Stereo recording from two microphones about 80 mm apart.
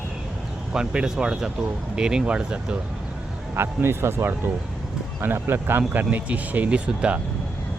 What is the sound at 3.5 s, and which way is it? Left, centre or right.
Speech, right.